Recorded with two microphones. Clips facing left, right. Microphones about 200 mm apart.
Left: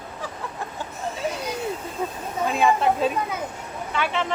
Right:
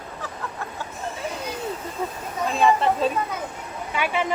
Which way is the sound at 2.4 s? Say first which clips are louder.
Even; 5° left (ahead or behind).